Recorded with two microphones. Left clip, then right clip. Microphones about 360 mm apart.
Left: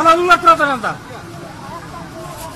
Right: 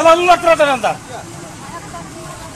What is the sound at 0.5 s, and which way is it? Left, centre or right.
Speech, right.